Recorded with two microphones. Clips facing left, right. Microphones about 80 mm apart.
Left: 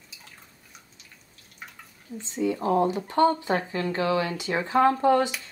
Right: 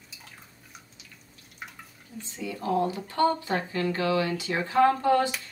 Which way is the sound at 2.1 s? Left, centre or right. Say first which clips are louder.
Left 9 dB; left.